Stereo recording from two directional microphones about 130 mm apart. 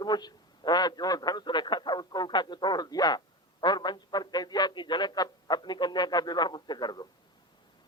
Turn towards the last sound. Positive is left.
turn(degrees=35)  # may be behind; listen again after turning